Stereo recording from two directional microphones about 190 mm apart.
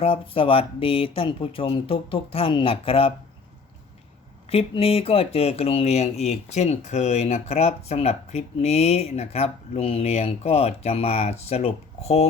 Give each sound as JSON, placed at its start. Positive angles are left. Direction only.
{"t": 0.0, "sound": "speech", "side_deg": 30}
{"t": 4.4, "sound": "speech", "side_deg": 30}